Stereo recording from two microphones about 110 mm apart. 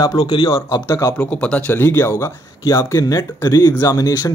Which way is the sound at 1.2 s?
10° left (ahead or behind).